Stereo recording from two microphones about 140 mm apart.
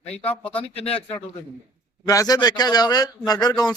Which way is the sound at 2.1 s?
25° left (ahead or behind).